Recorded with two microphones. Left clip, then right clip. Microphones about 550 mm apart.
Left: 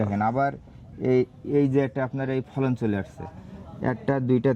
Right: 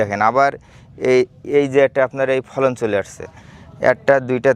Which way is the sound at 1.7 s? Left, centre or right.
Right.